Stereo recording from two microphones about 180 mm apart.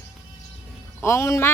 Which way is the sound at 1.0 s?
15° left (ahead or behind).